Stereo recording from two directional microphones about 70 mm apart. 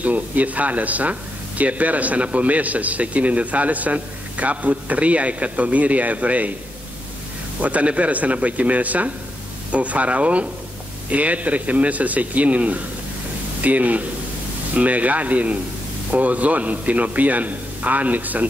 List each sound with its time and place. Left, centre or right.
0.0 s a man's voice: right
7.6 s a man's voice: centre